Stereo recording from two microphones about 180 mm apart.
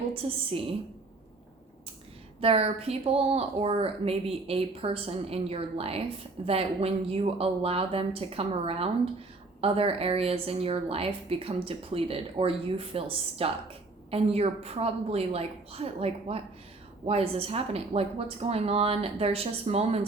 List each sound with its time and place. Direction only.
0.1 s a woman's voice: 30° right (ahead or behind)
2.4 s a woman's voice: 35° right (ahead or behind)